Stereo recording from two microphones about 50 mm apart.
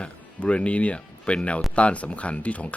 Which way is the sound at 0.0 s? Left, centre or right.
Left.